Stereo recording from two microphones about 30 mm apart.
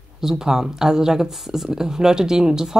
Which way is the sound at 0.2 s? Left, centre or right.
Centre.